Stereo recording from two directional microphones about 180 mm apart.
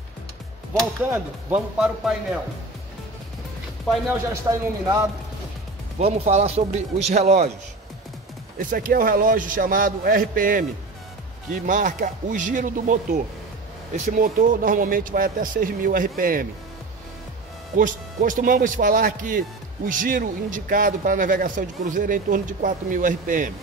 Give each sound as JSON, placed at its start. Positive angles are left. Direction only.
{"t": 1.1, "sound": "speech", "side_deg": -10}
{"t": 4.3, "sound": "speech", "side_deg": -15}
{"t": 5.9, "sound": "speech", "side_deg": -35}
{"t": 8.5, "sound": "a man's voice", "side_deg": -50}
{"t": 17.7, "sound": "a man's voice", "side_deg": -50}